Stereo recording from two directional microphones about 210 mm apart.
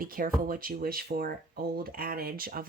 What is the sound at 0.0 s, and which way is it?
Speech, 40° right (ahead or behind).